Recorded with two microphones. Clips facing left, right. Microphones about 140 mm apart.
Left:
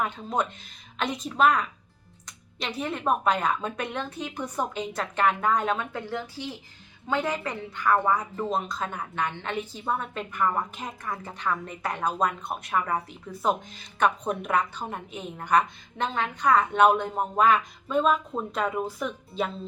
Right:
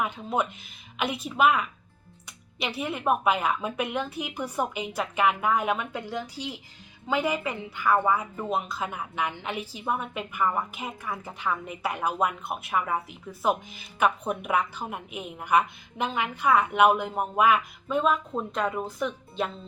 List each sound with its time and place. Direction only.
0.0 s a woman's voice: 5° right (ahead or behind)